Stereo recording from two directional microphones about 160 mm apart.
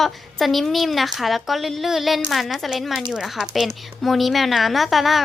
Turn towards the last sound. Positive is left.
turn(degrees=0)  # may be behind; listen again after turning